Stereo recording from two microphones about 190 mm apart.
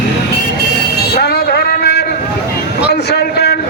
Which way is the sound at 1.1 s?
60° left (ahead or behind).